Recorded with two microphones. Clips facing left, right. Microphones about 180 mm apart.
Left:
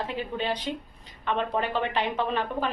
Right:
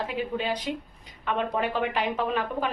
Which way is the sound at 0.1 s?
10° right (ahead or behind).